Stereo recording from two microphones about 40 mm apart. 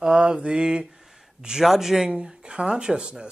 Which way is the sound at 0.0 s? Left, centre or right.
Centre.